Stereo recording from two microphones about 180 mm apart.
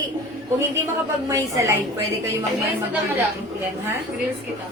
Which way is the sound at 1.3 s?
15° right (ahead or behind).